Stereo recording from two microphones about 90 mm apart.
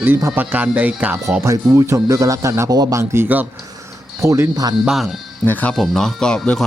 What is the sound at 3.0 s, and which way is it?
A man's voice, 30° right (ahead or behind).